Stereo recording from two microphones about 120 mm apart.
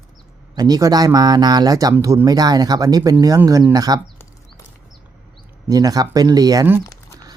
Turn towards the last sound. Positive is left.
turn(degrees=30)  # may be behind; listen again after turning